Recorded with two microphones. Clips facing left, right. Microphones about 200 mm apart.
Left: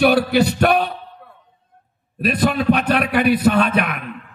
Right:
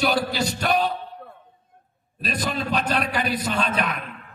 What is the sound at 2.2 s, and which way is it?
A man's voice, 60° left (ahead or behind).